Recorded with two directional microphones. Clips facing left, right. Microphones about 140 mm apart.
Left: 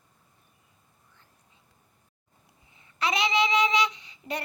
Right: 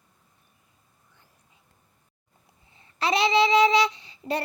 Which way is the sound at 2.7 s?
30° right (ahead or behind).